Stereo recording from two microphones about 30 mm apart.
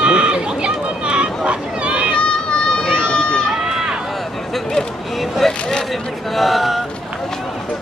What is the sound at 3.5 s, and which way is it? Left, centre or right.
Run, centre.